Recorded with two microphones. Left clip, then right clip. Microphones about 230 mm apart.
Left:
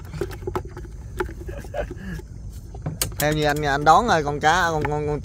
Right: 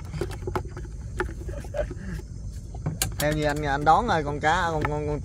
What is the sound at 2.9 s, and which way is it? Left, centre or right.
Vehicle, centre.